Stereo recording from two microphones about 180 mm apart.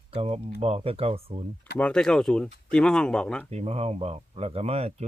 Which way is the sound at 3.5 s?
35° right (ahead or behind).